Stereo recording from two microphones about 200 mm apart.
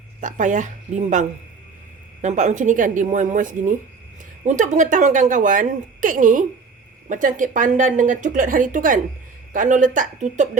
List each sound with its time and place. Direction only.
0.2 s a woman's voice: 40° right (ahead or behind)
2.2 s a woman's voice: 35° right (ahead or behind)